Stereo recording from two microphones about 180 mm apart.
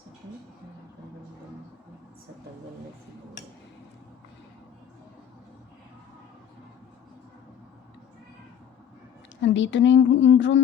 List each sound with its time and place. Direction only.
9.4 s speech: 90° left